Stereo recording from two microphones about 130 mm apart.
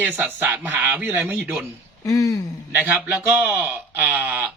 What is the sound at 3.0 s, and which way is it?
A man's voice, 15° right (ahead or behind).